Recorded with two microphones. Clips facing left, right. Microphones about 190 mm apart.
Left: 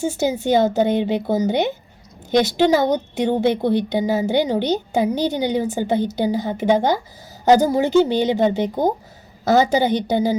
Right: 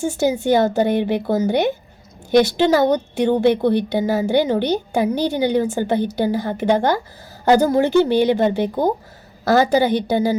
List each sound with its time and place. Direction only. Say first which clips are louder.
0.0 s a woman's voice: right 2 dB; 20° left (ahead or behind)